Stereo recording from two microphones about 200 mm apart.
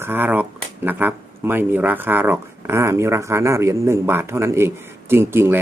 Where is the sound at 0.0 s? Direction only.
10° right (ahead or behind).